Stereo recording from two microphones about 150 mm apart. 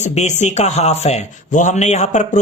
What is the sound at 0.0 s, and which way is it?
Speech, 50° left (ahead or behind).